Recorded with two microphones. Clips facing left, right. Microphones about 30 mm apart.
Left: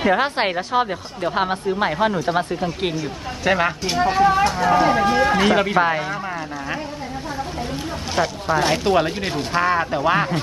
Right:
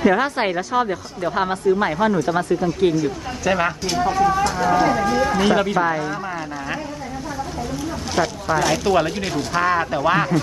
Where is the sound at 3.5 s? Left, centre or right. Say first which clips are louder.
Left 1 dB; centre.